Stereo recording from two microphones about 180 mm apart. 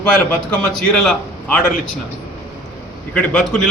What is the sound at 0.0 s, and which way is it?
A man's voice, 5° left (ahead or behind).